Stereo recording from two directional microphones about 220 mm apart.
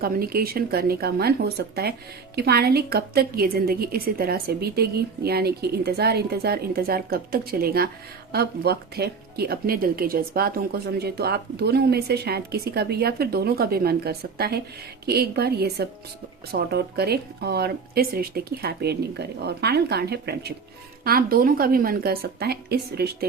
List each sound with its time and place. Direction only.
0.0 s speech: 45° right (ahead or behind)